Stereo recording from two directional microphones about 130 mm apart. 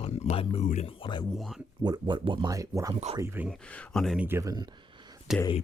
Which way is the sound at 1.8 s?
35° right (ahead or behind).